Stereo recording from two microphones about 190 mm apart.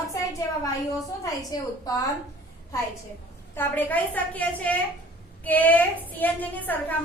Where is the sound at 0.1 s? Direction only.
15° left (ahead or behind).